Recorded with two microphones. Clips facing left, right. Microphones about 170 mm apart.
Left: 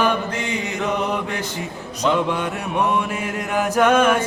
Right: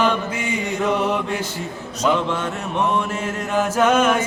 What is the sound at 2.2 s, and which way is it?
Mantra, 15° left (ahead or behind).